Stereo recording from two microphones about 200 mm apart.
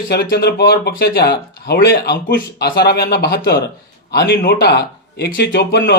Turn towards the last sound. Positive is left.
turn(degrees=55)  # may be behind; listen again after turning